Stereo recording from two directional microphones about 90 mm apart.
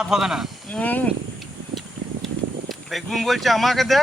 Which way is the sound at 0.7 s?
15° left (ahead or behind).